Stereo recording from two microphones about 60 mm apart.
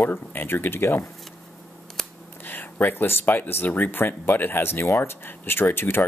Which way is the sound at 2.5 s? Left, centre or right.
Left.